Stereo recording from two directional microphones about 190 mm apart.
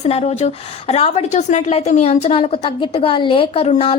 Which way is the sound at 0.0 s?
35° left (ahead or behind).